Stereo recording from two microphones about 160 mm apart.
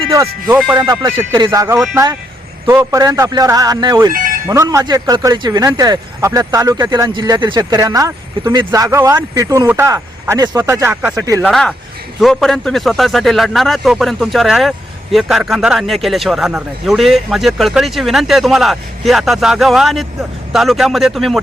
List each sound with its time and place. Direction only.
0.4 s a man's voice: centre (ahead or behind)
0.8 s speech: 25° right (ahead or behind)
1.5 s speech: 15° right (ahead or behind)
4.1 s speech: 60° right (ahead or behind)
4.4 s speech: 20° right (ahead or behind)
11.4 s a man's voice: centre (ahead or behind)